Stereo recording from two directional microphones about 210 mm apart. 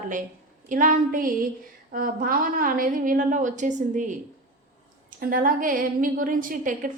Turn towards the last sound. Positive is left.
turn(degrees=-40)  # may be behind; listen again after turning